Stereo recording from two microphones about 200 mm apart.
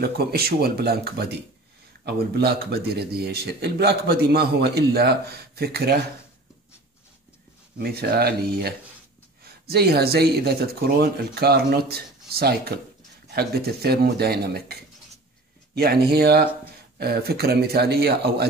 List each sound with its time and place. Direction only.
0.0 s speech: 50° right (ahead or behind)
7.8 s speech: 55° right (ahead or behind)